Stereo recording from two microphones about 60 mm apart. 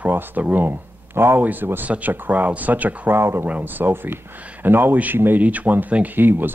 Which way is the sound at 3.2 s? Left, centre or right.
Right.